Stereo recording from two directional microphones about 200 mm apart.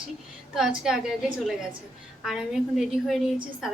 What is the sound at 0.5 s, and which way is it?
Speech, centre (ahead or behind).